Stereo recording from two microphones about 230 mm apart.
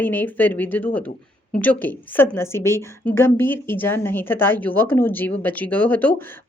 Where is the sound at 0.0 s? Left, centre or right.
Centre.